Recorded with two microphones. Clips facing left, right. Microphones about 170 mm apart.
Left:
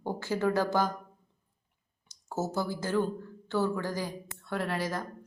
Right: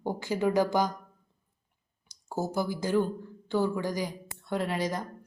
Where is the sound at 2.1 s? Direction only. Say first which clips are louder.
Right 1 dB; 10° right (ahead or behind).